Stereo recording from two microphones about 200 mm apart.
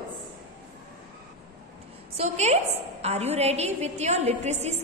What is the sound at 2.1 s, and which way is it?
A woman's voice, 35° right (ahead or behind).